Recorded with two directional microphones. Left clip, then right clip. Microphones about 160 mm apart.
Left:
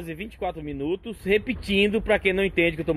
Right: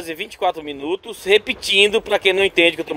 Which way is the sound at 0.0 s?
20° right (ahead or behind).